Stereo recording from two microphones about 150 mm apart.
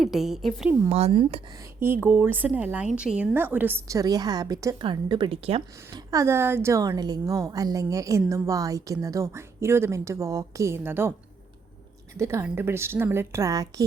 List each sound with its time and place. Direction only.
0.0 s a woman's voice: centre (ahead or behind)
0.9 s speech: 45° right (ahead or behind)
1.8 s speech: 15° right (ahead or behind); by 5.6 s 40° right (ahead or behind)
5.9 s a woman's voice: 20° right (ahead or behind)
12.1 s speech: 20° right (ahead or behind)